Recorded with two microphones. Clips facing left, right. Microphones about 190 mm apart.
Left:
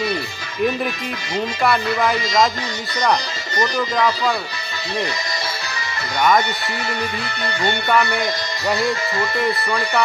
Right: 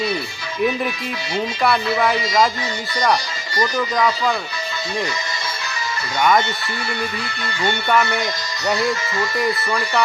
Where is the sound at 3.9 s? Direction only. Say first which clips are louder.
Even; centre (ahead or behind).